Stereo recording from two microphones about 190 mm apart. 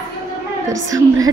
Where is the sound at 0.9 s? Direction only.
20° right (ahead or behind).